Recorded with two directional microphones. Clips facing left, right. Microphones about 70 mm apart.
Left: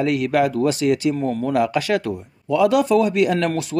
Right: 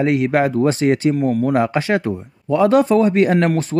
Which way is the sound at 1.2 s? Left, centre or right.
Centre.